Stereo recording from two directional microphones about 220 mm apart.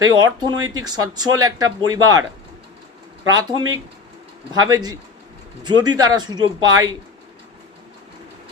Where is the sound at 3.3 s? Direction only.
20° right (ahead or behind).